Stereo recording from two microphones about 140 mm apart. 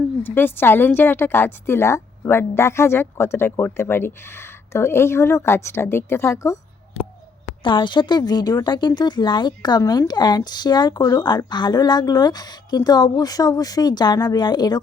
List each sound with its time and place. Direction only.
0.2 s a woman's voice: 15° left (ahead or behind)
7.6 s a woman's voice: 35° left (ahead or behind)